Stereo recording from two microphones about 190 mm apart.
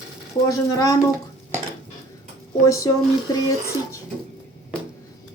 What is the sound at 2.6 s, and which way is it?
Speech, 15° left (ahead or behind).